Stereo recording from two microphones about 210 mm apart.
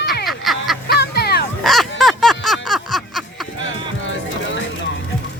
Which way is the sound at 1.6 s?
Centre (ahead or behind).